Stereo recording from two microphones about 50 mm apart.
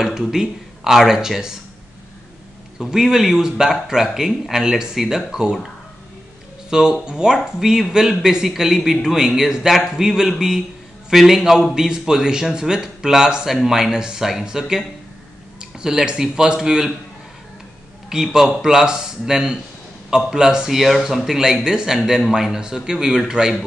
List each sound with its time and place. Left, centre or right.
0.0 s speech: centre
2.8 s a man's voice: centre
6.7 s a man's voice: centre
18.1 s a man's voice: centre